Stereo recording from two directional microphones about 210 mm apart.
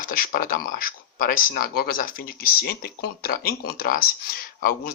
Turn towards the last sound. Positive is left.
turn(degrees=45)  # may be behind; listen again after turning